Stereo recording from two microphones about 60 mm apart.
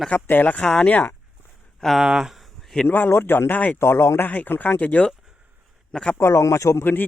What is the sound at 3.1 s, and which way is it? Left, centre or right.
Speech, left.